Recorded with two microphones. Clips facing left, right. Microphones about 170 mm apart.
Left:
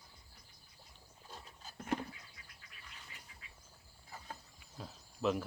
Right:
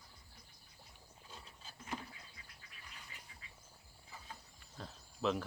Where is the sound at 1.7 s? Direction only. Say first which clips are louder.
Left 8 dB; 65° left (ahead or behind).